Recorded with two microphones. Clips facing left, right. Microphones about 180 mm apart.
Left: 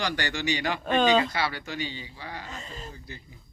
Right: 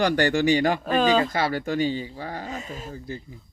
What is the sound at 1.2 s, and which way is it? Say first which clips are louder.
Speech: right 5 dB; 45° right (ahead or behind).